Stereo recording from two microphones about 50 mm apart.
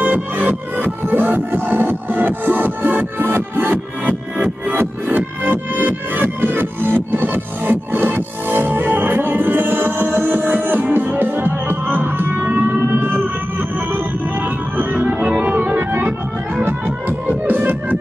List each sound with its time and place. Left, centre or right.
0.5 s music: right
4.0 s music: right
4.7 s music: right
15.2 s organ: right
17.5 s music: right